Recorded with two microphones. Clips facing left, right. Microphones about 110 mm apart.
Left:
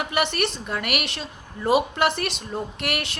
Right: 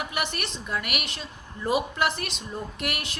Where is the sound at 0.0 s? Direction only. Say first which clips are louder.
Left 7 dB; 65° left (ahead or behind).